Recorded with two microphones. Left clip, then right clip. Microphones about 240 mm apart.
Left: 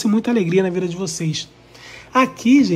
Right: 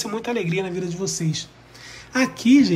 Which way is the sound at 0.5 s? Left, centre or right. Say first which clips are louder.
Left 8 dB; centre.